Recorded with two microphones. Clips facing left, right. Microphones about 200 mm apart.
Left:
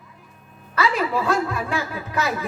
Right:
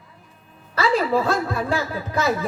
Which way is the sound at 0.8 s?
30° right (ahead or behind).